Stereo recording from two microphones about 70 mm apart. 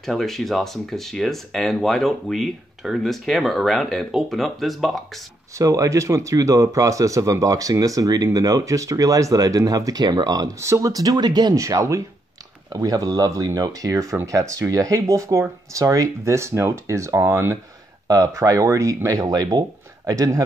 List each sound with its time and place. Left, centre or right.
0.0 s speech: centre
5.6 s speech: right
11.5 s speech: right
12.7 s speech: right
18.0 s speech: right